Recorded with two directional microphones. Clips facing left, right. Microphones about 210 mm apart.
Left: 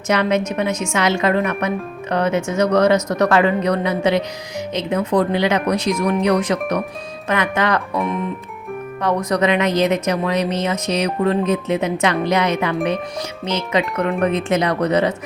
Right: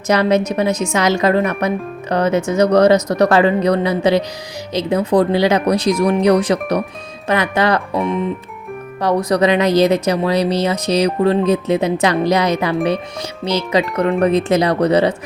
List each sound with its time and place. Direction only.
0.1 s a woman's voice: 35° right (ahead or behind)